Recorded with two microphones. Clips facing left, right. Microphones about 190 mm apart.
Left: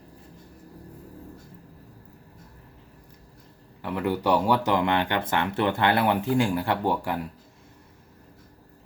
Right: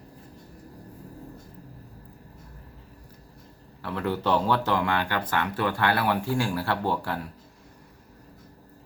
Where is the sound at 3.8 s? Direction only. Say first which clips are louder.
Left 2 dB; 15° left (ahead or behind).